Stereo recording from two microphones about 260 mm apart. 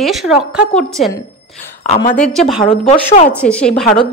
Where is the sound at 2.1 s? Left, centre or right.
Centre.